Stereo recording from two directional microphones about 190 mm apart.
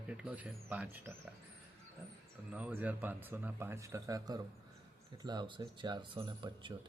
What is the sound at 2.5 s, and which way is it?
Speech, 10° right (ahead or behind).